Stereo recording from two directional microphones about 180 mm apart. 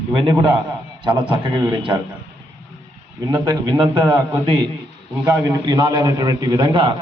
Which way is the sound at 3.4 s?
25° right (ahead or behind).